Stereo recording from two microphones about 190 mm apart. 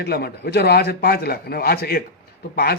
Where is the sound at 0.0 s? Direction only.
60° left (ahead or behind).